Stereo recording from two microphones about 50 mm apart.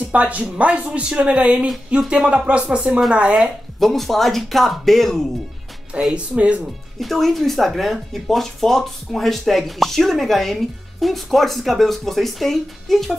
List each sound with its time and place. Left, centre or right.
0.1 s speech: right
3.8 s speech: centre
6.1 s speech: right
7.0 s speech: centre